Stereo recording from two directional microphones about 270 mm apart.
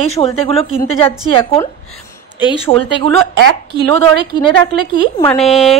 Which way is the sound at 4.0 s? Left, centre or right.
Centre.